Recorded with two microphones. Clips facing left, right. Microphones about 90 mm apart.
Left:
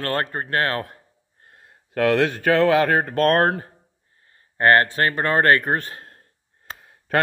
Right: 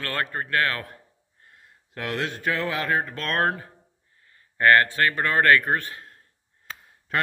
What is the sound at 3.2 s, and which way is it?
Speech, 40° left (ahead or behind).